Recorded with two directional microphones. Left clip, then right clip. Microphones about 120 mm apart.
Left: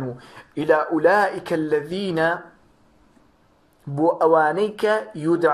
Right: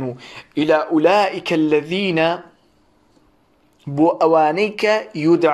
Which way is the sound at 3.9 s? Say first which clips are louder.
Right 3 dB; 45° right (ahead or behind).